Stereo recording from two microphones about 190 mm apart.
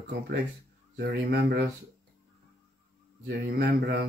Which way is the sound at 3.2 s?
55° right (ahead or behind).